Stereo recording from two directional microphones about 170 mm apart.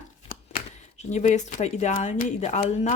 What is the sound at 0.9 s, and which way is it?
Speech, 45° left (ahead or behind).